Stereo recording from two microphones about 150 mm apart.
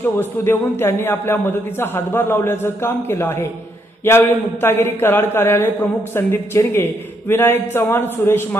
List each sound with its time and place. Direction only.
0.0 s a man's voice: 15° left (ahead or behind)